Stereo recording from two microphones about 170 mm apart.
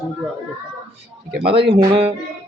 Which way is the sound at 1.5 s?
30° right (ahead or behind).